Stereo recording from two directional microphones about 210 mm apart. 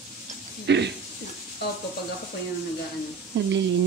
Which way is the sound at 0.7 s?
55° right (ahead or behind).